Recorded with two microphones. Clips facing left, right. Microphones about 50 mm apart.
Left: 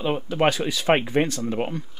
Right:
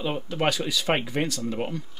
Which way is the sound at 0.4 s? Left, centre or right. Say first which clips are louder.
Left 3 dB; left.